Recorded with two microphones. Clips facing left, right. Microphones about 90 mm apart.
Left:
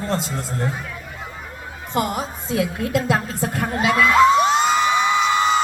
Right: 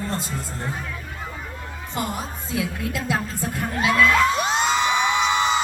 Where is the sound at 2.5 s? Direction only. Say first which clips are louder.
Left 6 dB; 55° left (ahead or behind).